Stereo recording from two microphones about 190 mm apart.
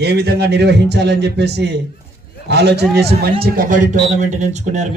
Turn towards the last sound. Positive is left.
turn(degrees=-40)  # may be behind; listen again after turning